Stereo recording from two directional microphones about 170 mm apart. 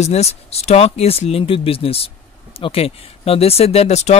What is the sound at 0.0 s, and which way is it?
Speech, 40° left (ahead or behind).